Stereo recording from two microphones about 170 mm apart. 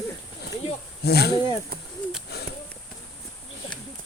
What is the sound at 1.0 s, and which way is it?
Speech, 75° left (ahead or behind).